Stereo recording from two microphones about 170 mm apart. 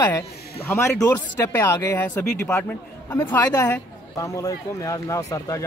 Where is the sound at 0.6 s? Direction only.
15° left (ahead or behind).